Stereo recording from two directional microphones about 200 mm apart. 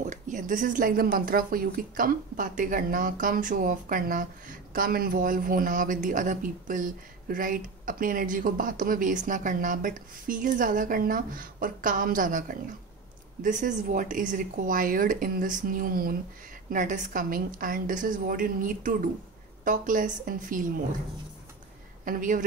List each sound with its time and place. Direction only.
0.0 s speech: 40° right (ahead or behind)
22.0 s a woman's voice: 40° right (ahead or behind)